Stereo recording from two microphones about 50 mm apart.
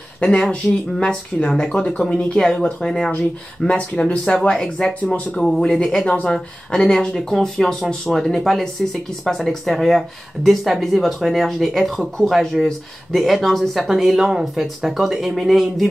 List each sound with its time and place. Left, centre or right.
0.2 s speech: centre
3.1 s speech: left; by 15.9 s centre